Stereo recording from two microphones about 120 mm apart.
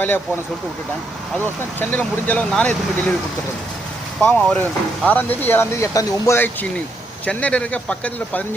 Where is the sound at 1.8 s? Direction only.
15° left (ahead or behind).